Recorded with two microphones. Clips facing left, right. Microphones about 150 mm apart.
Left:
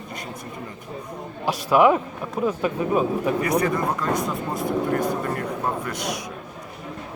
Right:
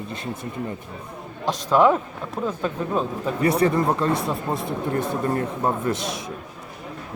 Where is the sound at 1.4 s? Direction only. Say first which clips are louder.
Left 1 dB; 10° left (ahead or behind).